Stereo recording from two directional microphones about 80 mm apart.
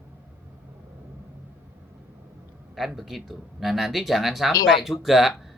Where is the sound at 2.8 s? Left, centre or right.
Centre.